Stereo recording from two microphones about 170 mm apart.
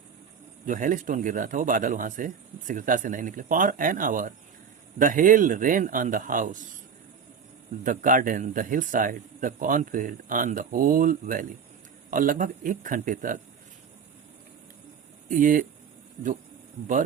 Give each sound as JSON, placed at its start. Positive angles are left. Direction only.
{"t": 0.6, "sound": "speech", "side_deg": -50}
{"t": 7.9, "sound": "speech", "side_deg": -50}
{"t": 15.3, "sound": "speech", "side_deg": -50}